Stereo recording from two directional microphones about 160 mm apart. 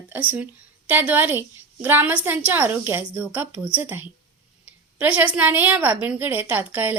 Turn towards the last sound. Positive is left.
turn(degrees=-10)  # may be behind; listen again after turning